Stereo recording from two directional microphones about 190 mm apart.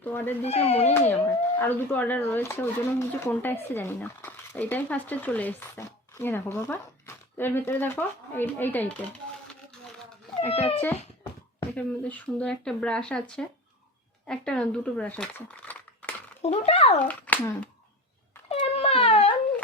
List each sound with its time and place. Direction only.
0.0 s speech: 10° left (ahead or behind)
0.4 s speech: 35° left (ahead or behind)
1.5 s speech: 10° left (ahead or behind)
10.5 s speech: 30° left (ahead or behind)
10.8 s a child's voice: 10° left (ahead or behind)
16.4 s speech: 35° left (ahead or behind)
17.0 s speech: 10° left (ahead or behind)
18.4 s a sound: 30° left (ahead or behind)